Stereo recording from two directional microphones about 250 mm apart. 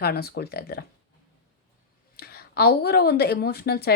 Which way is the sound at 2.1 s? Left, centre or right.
Left.